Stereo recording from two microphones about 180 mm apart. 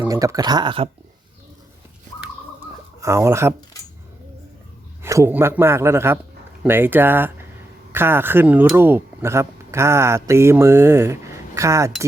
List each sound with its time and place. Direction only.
0.0 s speech: 15° right (ahead or behind)
3.0 s a man's voice: 15° right (ahead or behind)
5.0 s a man's voice: 15° right (ahead or behind)